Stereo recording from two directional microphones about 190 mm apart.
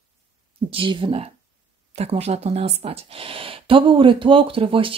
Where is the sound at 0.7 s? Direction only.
25° right (ahead or behind).